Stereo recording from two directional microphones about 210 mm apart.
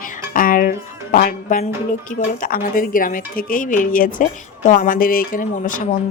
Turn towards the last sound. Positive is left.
turn(degrees=40)  # may be behind; listen again after turning